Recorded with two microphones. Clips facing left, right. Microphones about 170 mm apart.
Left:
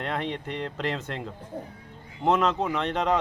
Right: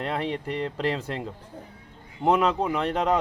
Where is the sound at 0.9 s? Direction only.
35° right (ahead or behind).